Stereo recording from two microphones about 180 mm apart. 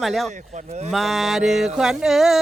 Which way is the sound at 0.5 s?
40° right (ahead or behind).